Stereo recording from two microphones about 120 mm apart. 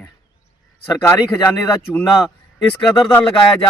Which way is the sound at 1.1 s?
25° left (ahead or behind).